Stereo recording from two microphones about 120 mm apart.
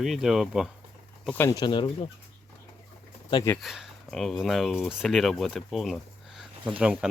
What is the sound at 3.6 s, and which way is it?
Speech, centre (ahead or behind).